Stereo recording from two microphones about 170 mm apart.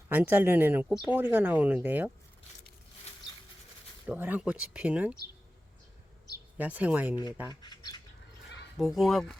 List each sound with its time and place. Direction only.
0.1 s speech: 10° right (ahead or behind)
4.0 s speech: 10° right (ahead or behind)
6.6 s speech: 10° right (ahead or behind)
7.4 s speech: 25° left (ahead or behind)
8.8 s speech: centre (ahead or behind)